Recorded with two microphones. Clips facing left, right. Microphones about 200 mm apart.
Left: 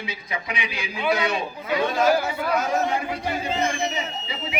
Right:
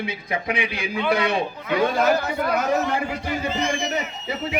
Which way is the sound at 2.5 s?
55° right (ahead or behind).